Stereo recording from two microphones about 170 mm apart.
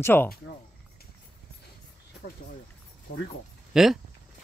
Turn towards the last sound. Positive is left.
turn(degrees=0)  # may be behind; listen again after turning